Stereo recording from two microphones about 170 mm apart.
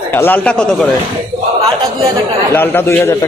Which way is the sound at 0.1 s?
10° left (ahead or behind).